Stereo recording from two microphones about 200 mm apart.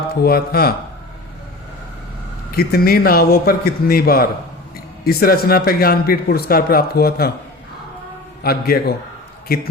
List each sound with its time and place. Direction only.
0.2 s a man's voice: 50° left (ahead or behind)
2.6 s a man's voice: 50° left (ahead or behind)
8.4 s a man's voice: 50° left (ahead or behind)